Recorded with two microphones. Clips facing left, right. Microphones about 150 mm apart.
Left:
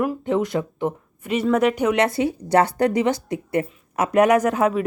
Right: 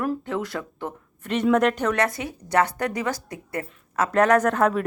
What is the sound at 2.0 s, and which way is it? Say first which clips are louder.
Speech: left 8 dB; 30° left (ahead or behind).